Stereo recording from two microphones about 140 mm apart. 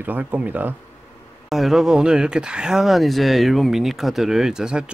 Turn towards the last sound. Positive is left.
turn(degrees=-5)  # may be behind; listen again after turning